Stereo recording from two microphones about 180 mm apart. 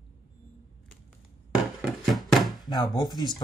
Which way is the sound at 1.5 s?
Centre (ahead or behind).